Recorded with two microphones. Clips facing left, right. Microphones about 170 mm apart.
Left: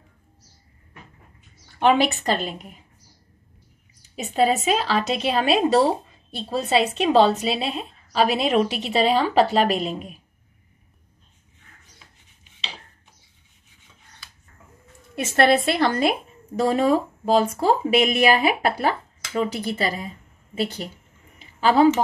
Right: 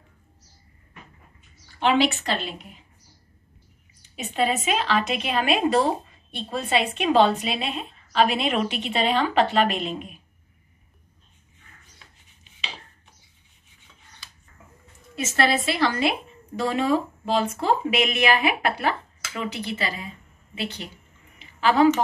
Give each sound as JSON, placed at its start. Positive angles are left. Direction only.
{"t": 1.8, "sound": "a woman's voice", "side_deg": 50}
{"t": 4.1, "sound": "a woman's voice", "side_deg": 35}
{"t": 7.0, "sound": "a woman's voice", "side_deg": 30}
{"t": 15.1, "sound": "a woman's voice", "side_deg": 55}
{"t": 21.4, "sound": "a sound", "side_deg": 35}